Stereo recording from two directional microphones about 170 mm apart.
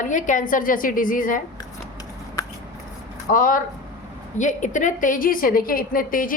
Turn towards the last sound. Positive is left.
turn(degrees=55)  # may be behind; listen again after turning